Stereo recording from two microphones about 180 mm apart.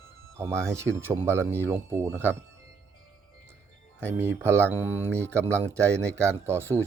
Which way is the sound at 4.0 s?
15° right (ahead or behind).